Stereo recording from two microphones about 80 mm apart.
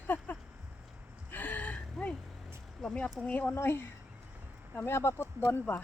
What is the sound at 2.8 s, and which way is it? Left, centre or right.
A woman's voice, centre.